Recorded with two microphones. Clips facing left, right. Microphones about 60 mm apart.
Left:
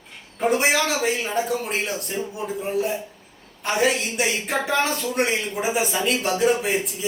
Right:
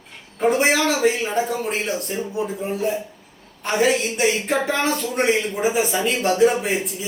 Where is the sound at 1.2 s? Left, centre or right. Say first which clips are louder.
Right 2 dB; centre.